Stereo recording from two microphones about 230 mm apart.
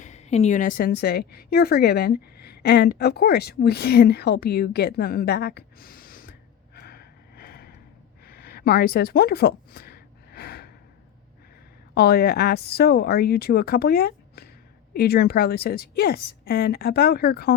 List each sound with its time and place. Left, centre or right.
0.0 s a woman's voice: left
6.7 s a sound: left
11.9 s a woman's voice: left